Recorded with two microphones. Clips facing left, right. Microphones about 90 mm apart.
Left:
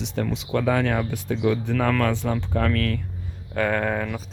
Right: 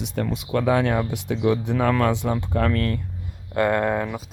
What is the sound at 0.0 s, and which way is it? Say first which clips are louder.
Speech: even; 5° right (ahead or behind).